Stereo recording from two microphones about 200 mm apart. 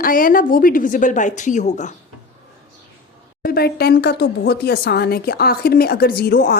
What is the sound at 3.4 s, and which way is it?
Speech, 50° left (ahead or behind).